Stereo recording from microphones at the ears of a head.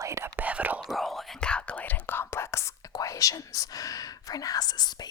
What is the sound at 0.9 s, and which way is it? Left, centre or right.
Whispering, centre.